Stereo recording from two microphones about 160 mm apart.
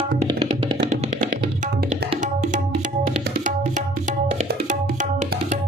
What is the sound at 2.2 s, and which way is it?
Tabla, 50° right (ahead or behind).